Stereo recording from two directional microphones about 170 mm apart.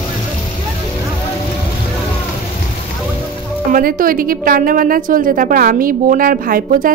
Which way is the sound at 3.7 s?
55° right (ahead or behind).